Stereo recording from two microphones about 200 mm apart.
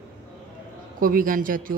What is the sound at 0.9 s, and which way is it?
Speech, 45° right (ahead or behind).